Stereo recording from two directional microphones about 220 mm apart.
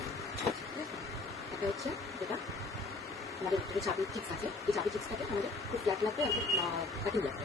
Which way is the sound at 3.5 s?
Centre (ahead or behind).